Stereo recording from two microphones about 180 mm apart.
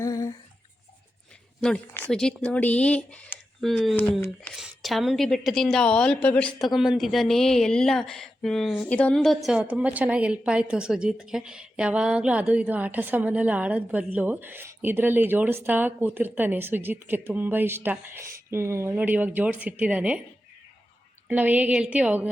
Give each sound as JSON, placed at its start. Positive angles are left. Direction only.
{"t": 0.0, "sound": "a sound", "side_deg": 20}
{"t": 1.9, "sound": "a woman's voice", "side_deg": 10}
{"t": 21.2, "sound": "a woman's voice", "side_deg": -10}